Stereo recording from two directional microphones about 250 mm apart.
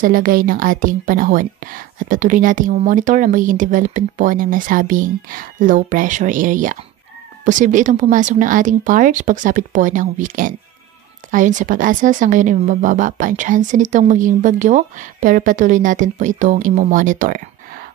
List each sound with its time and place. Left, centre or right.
0.0 s a woman's voice: right